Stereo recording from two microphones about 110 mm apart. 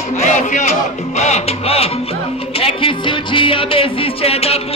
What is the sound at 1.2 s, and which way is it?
Music, 80° left.